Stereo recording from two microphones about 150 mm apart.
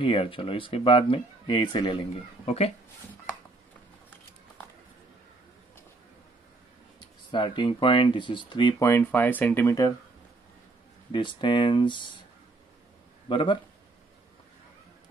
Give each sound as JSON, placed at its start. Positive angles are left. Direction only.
{"t": 0.0, "sound": "speech", "side_deg": 35}
{"t": 2.4, "sound": "speech", "side_deg": 45}
{"t": 7.2, "sound": "speech", "side_deg": 30}
{"t": 8.8, "sound": "speech", "side_deg": 15}
{"t": 11.1, "sound": "speech", "side_deg": 35}
{"t": 13.3, "sound": "speech", "side_deg": 35}